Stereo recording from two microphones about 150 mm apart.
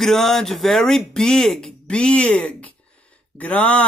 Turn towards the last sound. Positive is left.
turn(degrees=10)  # may be behind; listen again after turning